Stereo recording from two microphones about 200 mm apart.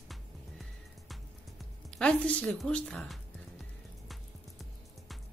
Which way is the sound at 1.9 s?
5° left (ahead or behind).